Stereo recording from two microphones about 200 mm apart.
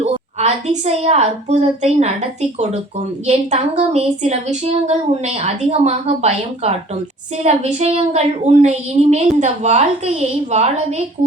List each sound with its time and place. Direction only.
0.0 s a woman's voice: 35° right (ahead or behind)